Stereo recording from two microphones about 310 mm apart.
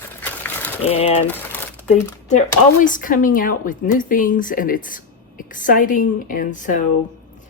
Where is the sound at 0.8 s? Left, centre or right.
Centre.